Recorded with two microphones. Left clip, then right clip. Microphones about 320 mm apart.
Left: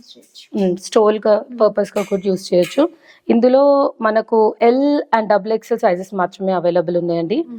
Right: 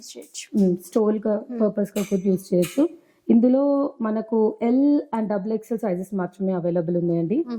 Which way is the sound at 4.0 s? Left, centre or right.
Centre.